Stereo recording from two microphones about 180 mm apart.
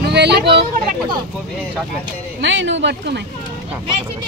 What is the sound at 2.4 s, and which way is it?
Speech, 85° right.